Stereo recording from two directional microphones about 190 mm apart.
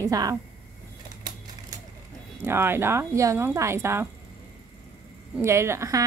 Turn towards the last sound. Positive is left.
turn(degrees=-15)  # may be behind; listen again after turning